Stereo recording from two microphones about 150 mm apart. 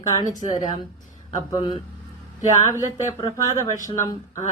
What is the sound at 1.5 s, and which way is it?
Speech, 35° left (ahead or behind).